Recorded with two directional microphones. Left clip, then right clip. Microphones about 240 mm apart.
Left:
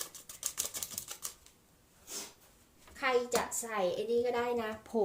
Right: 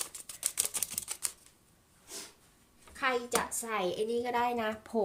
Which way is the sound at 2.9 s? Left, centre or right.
Right.